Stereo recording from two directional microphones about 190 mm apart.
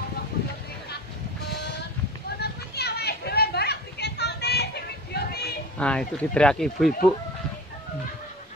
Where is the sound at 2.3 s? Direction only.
60° left (ahead or behind).